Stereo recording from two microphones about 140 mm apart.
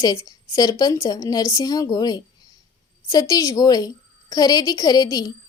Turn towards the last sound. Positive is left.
turn(degrees=25)  # may be behind; listen again after turning